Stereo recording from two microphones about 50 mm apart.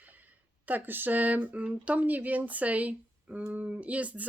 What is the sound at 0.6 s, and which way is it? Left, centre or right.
Speech, right.